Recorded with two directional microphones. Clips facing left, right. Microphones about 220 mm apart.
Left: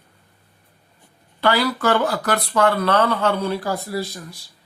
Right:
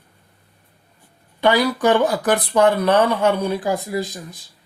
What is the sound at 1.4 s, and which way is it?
Speech, 15° right (ahead or behind).